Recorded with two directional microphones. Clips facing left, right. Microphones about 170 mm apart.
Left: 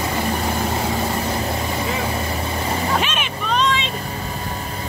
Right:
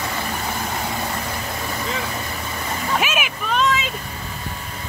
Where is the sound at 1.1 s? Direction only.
30° left (ahead or behind).